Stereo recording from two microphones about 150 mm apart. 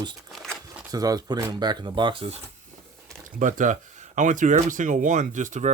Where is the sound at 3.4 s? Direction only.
55° right (ahead or behind).